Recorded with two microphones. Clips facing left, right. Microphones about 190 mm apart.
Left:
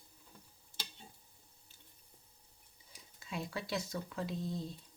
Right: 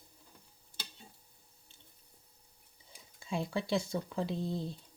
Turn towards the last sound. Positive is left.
turn(degrees=-30)  # may be behind; listen again after turning